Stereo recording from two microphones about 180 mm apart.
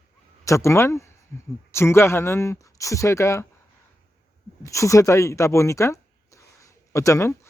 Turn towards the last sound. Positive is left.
turn(degrees=15)  # may be behind; listen again after turning